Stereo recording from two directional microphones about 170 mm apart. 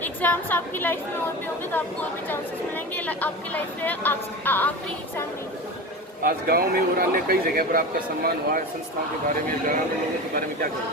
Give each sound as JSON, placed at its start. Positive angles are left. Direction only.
{"t": 0.0, "sound": "speech", "side_deg": 10}
{"t": 2.3, "sound": "speech", "side_deg": 10}
{"t": 6.2, "sound": "a man's voice", "side_deg": -60}